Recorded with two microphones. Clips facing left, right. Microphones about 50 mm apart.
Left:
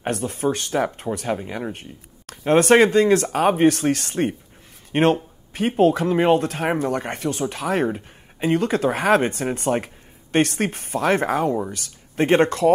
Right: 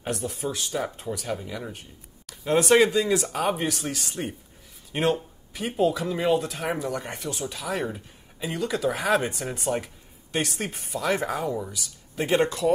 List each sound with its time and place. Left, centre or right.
0.0 s speech: left